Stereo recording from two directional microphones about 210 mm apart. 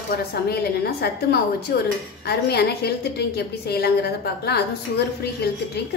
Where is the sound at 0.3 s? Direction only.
50° left (ahead or behind).